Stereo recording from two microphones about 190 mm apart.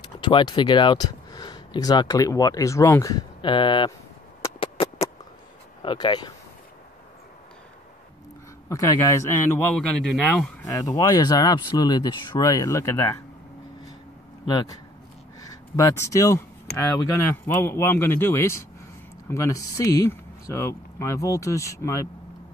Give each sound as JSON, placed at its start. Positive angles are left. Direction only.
{"t": 0.2, "sound": "speech", "side_deg": 25}
{"t": 4.6, "sound": "a sound", "side_deg": 30}
{"t": 5.8, "sound": "speech", "side_deg": 25}
{"t": 8.6, "sound": "a man's voice", "side_deg": 15}
{"t": 14.5, "sound": "a man's voice", "side_deg": 20}